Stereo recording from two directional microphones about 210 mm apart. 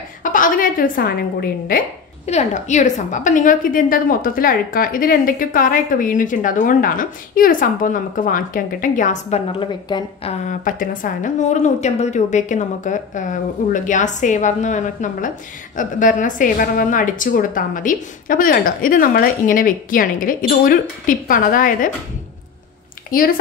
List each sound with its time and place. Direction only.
0.2 s a woman's voice: 40° left (ahead or behind)
2.2 s a woman's voice: 35° left (ahead or behind)
10.4 s a woman's voice: 35° left (ahead or behind)
23.1 s a woman's voice: 40° left (ahead or behind)